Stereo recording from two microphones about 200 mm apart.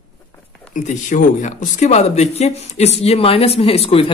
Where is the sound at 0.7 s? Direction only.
40° left (ahead or behind).